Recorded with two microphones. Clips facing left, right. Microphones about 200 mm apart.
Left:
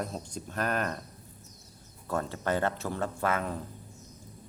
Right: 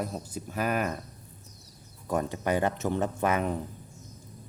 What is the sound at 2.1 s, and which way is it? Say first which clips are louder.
Speech: right 3 dB; 15° right (ahead or behind).